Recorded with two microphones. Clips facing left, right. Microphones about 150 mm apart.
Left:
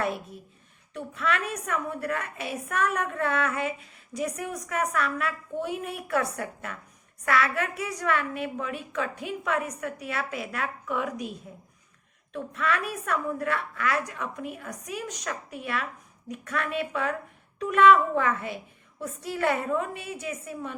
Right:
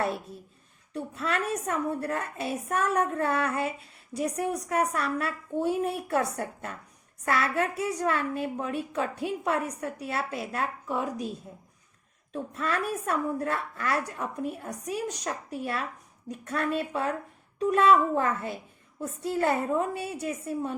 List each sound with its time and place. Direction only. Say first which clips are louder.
0.9 s a woman's voice: left 1 dB; 30° right (ahead or behind)